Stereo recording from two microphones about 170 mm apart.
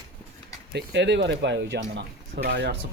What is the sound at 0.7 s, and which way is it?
Speech, 90° right.